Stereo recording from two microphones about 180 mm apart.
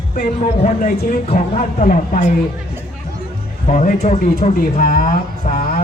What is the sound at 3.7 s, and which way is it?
Speech, 50° left (ahead or behind).